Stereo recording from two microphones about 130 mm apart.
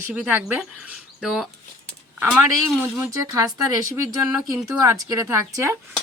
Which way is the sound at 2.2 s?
15° right (ahead or behind).